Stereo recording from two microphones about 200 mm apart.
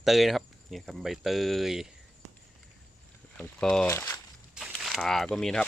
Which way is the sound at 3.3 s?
5° left (ahead or behind).